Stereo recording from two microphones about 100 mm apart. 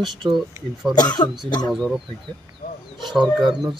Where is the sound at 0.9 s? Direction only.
45° left (ahead or behind).